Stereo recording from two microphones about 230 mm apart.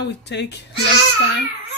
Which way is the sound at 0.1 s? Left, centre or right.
Left.